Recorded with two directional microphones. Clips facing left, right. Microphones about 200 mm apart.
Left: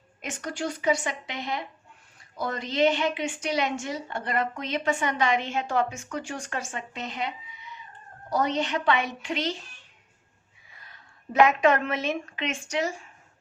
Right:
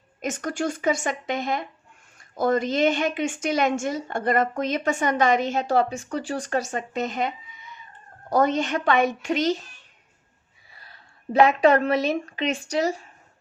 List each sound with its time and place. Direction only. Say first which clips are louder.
0.2 s a woman's voice: right 5 dB; 45° right (ahead or behind)
10.7 s a woman's voice: right 2 dB; 35° right (ahead or behind)